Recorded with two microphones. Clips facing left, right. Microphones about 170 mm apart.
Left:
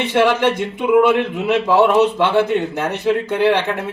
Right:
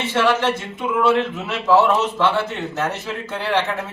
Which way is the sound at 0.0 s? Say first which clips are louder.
Left 4 dB; 15° left (ahead or behind).